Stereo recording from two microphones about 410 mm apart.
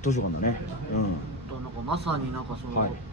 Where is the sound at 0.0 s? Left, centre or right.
Centre.